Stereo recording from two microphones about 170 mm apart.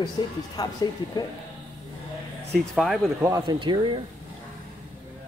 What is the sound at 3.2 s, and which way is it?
Speech, 25° right (ahead or behind).